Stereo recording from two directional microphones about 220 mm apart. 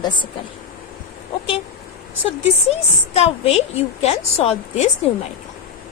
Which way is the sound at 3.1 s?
30° left (ahead or behind).